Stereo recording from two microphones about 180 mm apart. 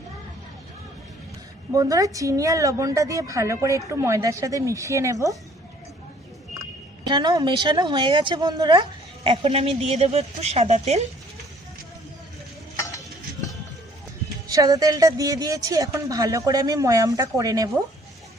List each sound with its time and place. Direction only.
1.7 s a woman's voice: 20° right (ahead or behind)
7.1 s speech: 25° right (ahead or behind)
14.4 s speech: 20° right (ahead or behind)